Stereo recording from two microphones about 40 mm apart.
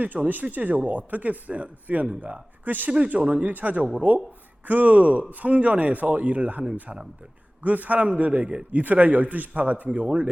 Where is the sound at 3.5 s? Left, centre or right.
Right.